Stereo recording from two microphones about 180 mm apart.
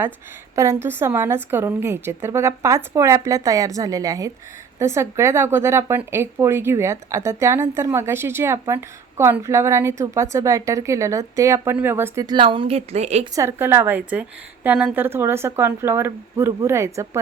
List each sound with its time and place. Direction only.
0.5 s speech: 15° right (ahead or behind); by 13.2 s 35° right (ahead or behind)
13.3 s speech: 15° right (ahead or behind)